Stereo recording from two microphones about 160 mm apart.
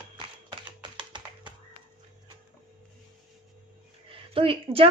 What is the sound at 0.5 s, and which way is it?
Typing, 30° right (ahead or behind).